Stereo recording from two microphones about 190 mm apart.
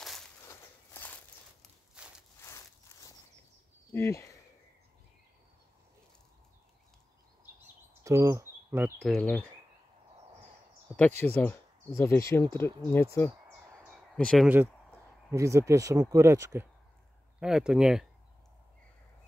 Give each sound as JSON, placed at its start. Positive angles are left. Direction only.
{"t": 0.5, "sound": "walk", "side_deg": 10}
{"t": 2.0, "sound": "a sound", "side_deg": -5}
{"t": 2.4, "sound": "a sound", "side_deg": 15}
{"t": 3.9, "sound": "speech", "side_deg": 15}
{"t": 8.0, "sound": "bird", "side_deg": -15}
{"t": 9.0, "sound": "speech", "side_deg": 5}
{"t": 11.0, "sound": "speech", "side_deg": 10}
{"t": 14.1, "sound": "speech", "side_deg": 5}
{"t": 15.3, "sound": "speech", "side_deg": -15}
{"t": 17.4, "sound": "speech", "side_deg": -5}